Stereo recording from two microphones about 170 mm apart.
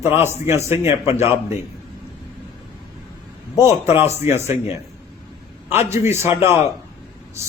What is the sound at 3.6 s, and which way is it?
Speech, 15° right (ahead or behind).